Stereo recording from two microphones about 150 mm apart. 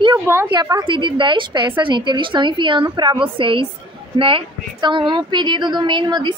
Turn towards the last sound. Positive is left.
turn(degrees=-30)  # may be behind; listen again after turning